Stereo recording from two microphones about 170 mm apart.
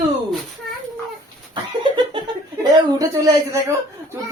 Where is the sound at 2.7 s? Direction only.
20° right (ahead or behind).